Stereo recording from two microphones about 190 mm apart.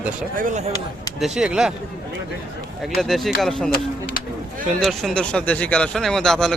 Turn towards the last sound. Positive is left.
turn(degrees=0)  # may be behind; listen again after turning